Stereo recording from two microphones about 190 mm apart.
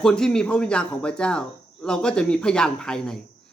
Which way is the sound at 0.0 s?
5° left (ahead or behind).